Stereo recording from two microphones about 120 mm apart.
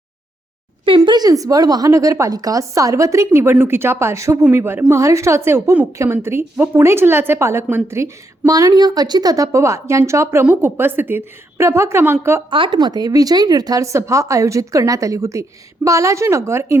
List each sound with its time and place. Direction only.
0.9 s a woman's voice: 40° right (ahead or behind); by 12.4 s 20° right (ahead or behind)
12.5 s speech: 45° right (ahead or behind); by 16.7 s 20° right (ahead or behind)